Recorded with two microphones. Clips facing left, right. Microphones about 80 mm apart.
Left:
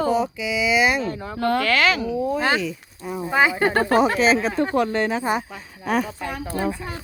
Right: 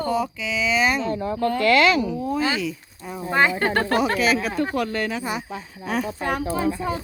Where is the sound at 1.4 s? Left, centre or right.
Left.